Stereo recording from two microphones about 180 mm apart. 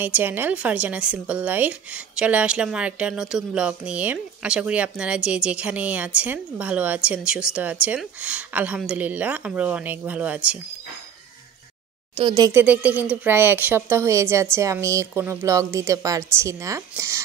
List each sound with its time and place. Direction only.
0.0 s speech: 10° right (ahead or behind)
12.2 s speech: 25° right (ahead or behind)
12.6 s speech: 10° right (ahead or behind)